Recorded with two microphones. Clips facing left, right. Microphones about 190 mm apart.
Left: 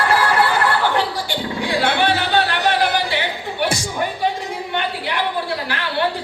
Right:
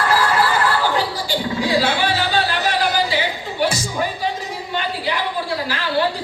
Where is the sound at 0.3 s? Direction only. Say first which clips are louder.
Left 1 dB; 60° left (ahead or behind).